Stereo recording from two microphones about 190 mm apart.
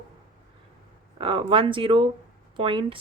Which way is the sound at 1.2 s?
25° right (ahead or behind).